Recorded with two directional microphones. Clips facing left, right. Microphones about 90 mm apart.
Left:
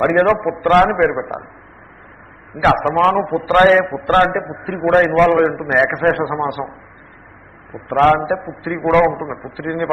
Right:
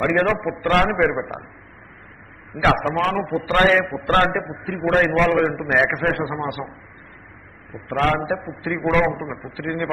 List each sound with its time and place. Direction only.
0.0 s a man's voice: 35° left (ahead or behind); by 1.4 s 20° left (ahead or behind)
2.8 s a man's voice: 35° left (ahead or behind); by 4.5 s 15° left (ahead or behind)
4.8 s a man's voice: 25° left (ahead or behind)
5.9 s a man's voice: 40° left (ahead or behind)
7.7 s a man's voice: 35° left (ahead or behind)